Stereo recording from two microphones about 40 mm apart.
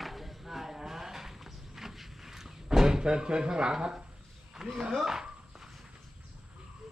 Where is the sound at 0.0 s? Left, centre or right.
Centre.